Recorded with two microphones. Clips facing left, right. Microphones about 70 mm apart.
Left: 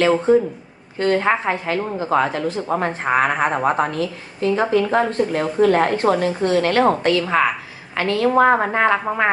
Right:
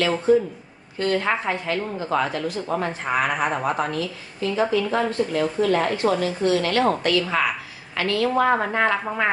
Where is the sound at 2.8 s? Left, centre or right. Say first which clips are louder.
Left 6 dB; left.